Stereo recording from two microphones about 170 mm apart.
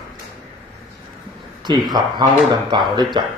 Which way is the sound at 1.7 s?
25° right (ahead or behind).